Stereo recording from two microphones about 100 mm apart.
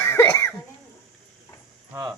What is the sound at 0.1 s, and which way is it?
Cough, 25° left (ahead or behind).